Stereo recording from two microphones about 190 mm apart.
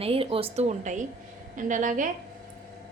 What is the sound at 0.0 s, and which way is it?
A woman's voice, 30° right (ahead or behind).